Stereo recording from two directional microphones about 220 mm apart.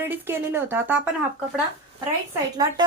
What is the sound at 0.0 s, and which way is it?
A woman's voice, 10° right (ahead or behind).